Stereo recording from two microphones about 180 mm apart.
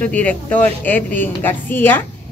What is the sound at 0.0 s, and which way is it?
A woman's voice, 5° left (ahead or behind).